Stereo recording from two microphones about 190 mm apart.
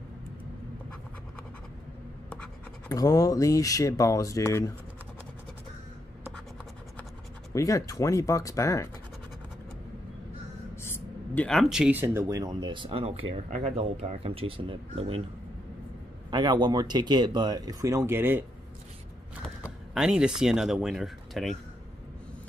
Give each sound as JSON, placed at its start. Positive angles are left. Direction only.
{"t": 2.9, "sound": "speech", "side_deg": 20}
{"t": 7.5, "sound": "speech", "side_deg": 15}
{"t": 10.8, "sound": "speech", "side_deg": 10}
{"t": 16.3, "sound": "speech", "side_deg": -20}
{"t": 19.6, "sound": "speech", "side_deg": -5}